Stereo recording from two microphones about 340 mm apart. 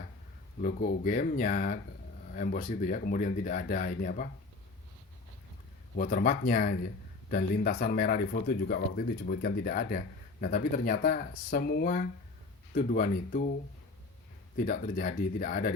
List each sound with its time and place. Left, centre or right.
0.6 s speech: left
6.0 s speech: left
14.5 s speech: left